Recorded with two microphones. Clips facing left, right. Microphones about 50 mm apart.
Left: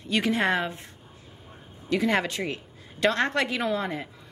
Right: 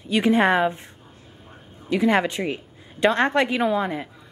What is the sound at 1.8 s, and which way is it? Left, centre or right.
A woman's voice, centre.